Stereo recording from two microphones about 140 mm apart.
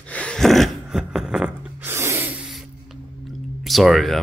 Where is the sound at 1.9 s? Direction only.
15° right (ahead or behind).